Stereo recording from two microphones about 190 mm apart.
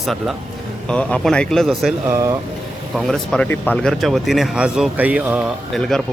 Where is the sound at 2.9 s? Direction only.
Centre (ahead or behind).